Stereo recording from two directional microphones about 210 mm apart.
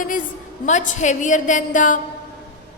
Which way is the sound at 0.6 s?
35° left (ahead or behind).